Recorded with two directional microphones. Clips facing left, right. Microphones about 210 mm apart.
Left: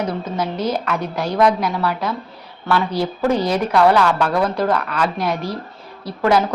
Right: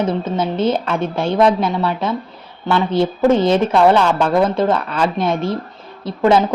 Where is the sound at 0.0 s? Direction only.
25° right (ahead or behind).